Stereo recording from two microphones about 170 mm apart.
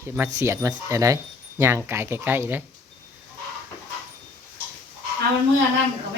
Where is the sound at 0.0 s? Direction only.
15° right (ahead or behind).